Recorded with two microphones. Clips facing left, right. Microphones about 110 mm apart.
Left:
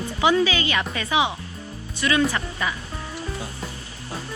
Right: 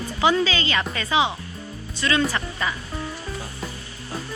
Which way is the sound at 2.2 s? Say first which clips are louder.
Left 1 dB; centre (ahead or behind).